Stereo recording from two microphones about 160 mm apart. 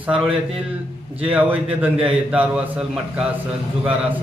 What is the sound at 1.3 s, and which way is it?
Speech, 10° right (ahead or behind).